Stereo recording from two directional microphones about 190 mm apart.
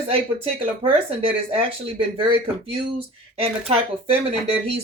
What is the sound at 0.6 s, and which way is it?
Speech, 25° right (ahead or behind).